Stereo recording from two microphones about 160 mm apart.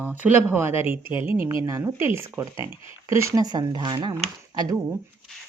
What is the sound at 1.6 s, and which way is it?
Speech, 15° right (ahead or behind).